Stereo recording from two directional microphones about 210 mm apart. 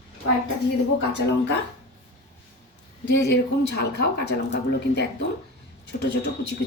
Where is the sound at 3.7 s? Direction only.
50° left (ahead or behind).